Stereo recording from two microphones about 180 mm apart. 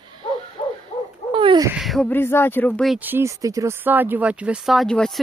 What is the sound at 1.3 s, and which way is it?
Owl, 25° right (ahead or behind).